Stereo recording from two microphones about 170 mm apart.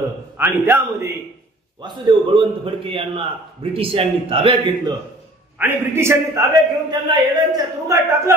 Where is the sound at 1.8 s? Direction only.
30° right (ahead or behind).